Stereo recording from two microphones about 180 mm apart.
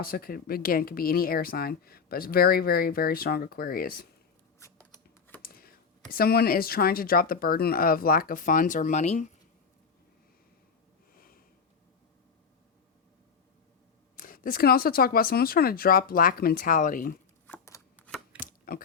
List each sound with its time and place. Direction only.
0.0 s speech: 55° left (ahead or behind)
5.4 s speech: 55° left (ahead or behind); by 9.3 s 40° left (ahead or behind)
11.1 s sniff: 55° left (ahead or behind)
14.2 s speech: 50° left (ahead or behind)
17.4 s shuffling cards: 10° left (ahead or behind)
18.3 s a sound: 55° left (ahead or behind)